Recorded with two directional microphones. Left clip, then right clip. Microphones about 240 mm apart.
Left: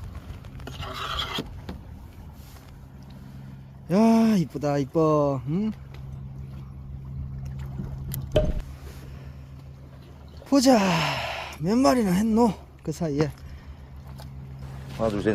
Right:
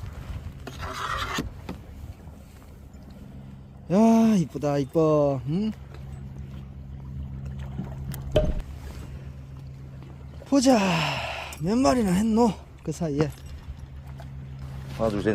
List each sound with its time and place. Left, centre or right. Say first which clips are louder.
0.8 s filing: right 1 dB; centre
3.8 s speech: even; centre
8.1 s a sound: even; centre
10.5 s speech: left 1 dB; centre
14.8 s vehicle: even; centre